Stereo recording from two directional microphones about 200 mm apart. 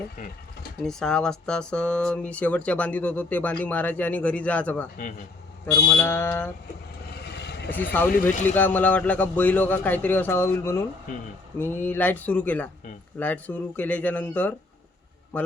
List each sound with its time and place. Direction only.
0.8 s speech: 5° left (ahead or behind)
7.3 s vehicle: 55° left (ahead or behind)
7.9 s speech: 10° left (ahead or behind)